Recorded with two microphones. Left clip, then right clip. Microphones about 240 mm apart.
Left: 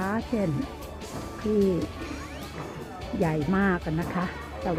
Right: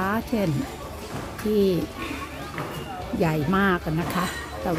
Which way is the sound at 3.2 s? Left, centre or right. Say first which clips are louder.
Right 3 dB; right.